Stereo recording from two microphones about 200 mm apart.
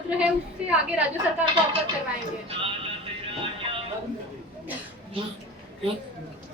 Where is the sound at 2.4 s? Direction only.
25° right (ahead or behind).